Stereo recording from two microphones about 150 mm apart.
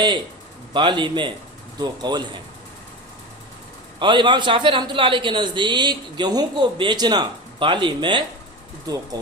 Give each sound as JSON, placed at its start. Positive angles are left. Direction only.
{"t": 0.7, "sound": "a man's voice", "side_deg": -30}
{"t": 4.0, "sound": "a man's voice", "side_deg": -30}